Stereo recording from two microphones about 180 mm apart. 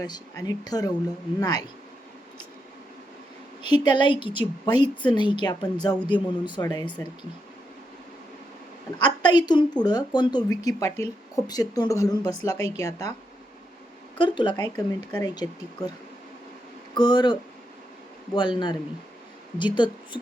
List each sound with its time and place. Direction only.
0.0 s a woman's voice: 20° left (ahead or behind)
3.6 s a woman's voice: 25° left (ahead or behind)
9.0 s a woman's voice: 25° left (ahead or behind)
14.2 s a woman's voice: 25° left (ahead or behind)
16.9 s a woman's voice: 25° left (ahead or behind)
18.3 s a woman's voice: 25° left (ahead or behind)